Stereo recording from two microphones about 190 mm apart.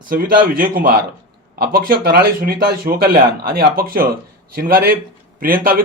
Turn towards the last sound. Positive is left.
turn(degrees=-50)  # may be behind; listen again after turning